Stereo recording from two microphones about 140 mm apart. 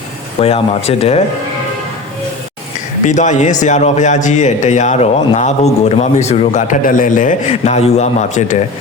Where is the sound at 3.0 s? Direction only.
60° left (ahead or behind).